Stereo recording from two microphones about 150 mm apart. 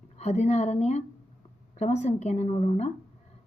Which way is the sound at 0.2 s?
45° left (ahead or behind).